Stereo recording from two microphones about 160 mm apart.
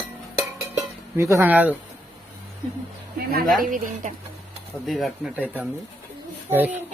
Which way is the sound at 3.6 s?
55° right (ahead or behind).